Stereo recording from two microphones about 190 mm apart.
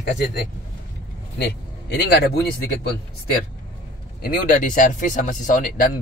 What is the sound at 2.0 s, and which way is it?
Speech, 60° left (ahead or behind).